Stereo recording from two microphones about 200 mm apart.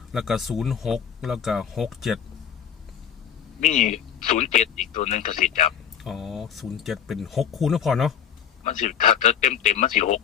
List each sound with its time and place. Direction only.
0.1 s speech: centre (ahead or behind)
3.6 s a man's voice: 40° left (ahead or behind)
6.0 s speech: centre (ahead or behind)
8.6 s a man's voice: 40° left (ahead or behind)